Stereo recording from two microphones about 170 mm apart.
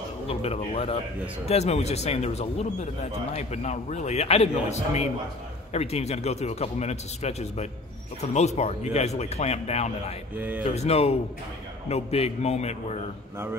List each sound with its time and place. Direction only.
0.3 s speech: 35° left (ahead or behind)
10.3 s speech: 10° right (ahead or behind)
10.7 s speech: 40° left (ahead or behind)